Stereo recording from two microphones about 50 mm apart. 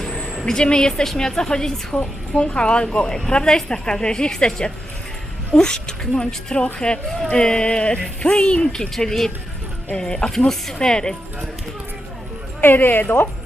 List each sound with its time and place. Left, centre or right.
0.0 s a sound: centre
0.4 s speech: centre
12.6 s a woman's voice: left